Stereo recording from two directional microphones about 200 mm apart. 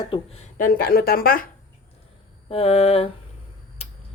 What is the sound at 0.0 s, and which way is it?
Speech, 30° left (ahead or behind).